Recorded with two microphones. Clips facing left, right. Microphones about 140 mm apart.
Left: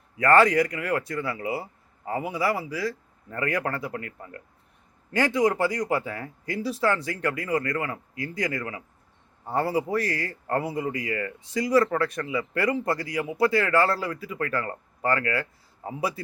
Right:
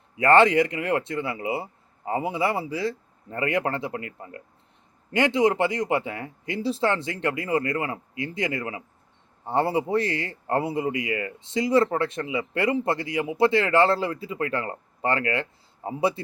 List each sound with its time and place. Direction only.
0.2 s speech: 25° right (ahead or behind)